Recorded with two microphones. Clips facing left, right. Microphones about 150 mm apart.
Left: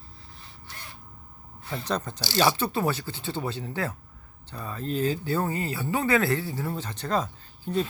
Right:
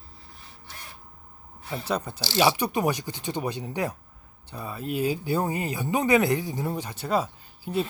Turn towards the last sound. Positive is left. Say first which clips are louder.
# even
turn(degrees=-10)  # may be behind; listen again after turning